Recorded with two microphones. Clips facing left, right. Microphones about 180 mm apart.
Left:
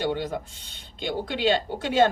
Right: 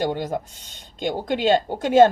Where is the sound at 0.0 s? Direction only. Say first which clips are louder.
Right 3 dB; 45° right (ahead or behind).